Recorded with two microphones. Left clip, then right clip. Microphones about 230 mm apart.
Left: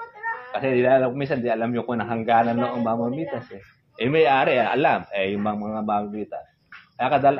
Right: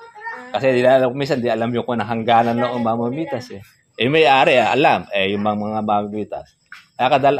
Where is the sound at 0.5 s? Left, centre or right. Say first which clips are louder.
Right 5 dB; right.